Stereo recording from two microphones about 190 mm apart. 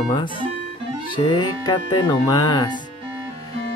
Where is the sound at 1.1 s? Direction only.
25° left (ahead or behind).